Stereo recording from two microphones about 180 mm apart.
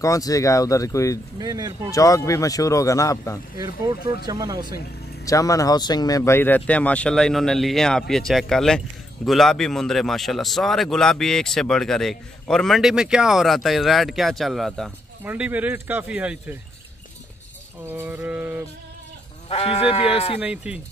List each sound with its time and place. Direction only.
0.0 s speech: 20° left (ahead or behind)
1.4 s speech: 20° right (ahead or behind)
1.9 s speech: 20° left (ahead or behind)
3.5 s speech: 20° right (ahead or behind)
5.2 s speech: 20° left (ahead or behind); by 16.5 s 5° right (ahead or behind)
17.8 s speech: 10° right (ahead or behind)
19.5 s speech: 35° left (ahead or behind)
20.3 s speech: 5° right (ahead or behind)